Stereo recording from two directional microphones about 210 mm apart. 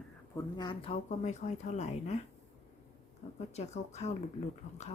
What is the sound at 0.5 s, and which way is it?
Speech, 20° left (ahead or behind).